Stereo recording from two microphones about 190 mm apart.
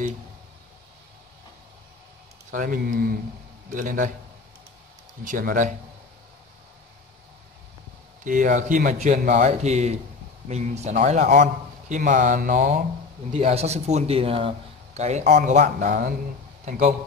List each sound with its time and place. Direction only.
2.5 s speech: 45° right (ahead or behind)
5.2 s speech: 45° right (ahead or behind)
8.2 s speech: 45° right (ahead or behind)